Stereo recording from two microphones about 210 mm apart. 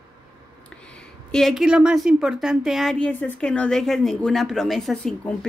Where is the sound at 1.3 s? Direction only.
Centre (ahead or behind).